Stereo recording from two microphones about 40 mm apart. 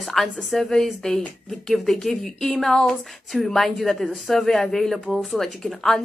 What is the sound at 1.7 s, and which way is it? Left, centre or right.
Speech, centre.